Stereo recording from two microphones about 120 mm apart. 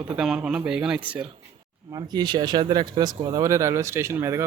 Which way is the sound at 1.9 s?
35° right (ahead or behind).